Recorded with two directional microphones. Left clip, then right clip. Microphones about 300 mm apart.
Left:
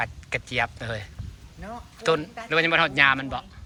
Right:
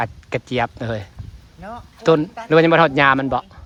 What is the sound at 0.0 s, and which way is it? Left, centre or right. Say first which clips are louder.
Speech: right 5 dB; centre.